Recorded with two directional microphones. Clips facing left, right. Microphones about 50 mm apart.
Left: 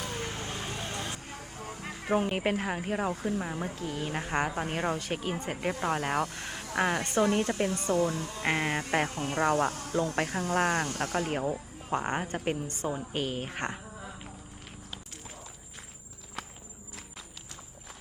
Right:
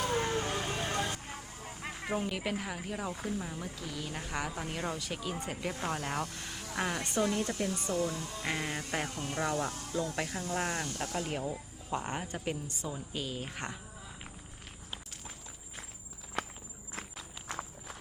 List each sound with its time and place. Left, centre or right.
0.0 s vehicle: centre
2.0 s speech: left
8.0 s speech: left
8.4 s speech: left
11.3 s speech: left
16.4 s walk: centre